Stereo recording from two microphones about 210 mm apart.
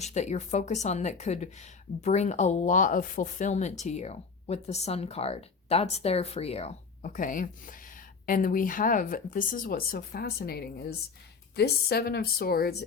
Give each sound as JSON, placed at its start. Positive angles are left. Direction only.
{"t": 0.0, "sound": "a woman's voice", "side_deg": 35}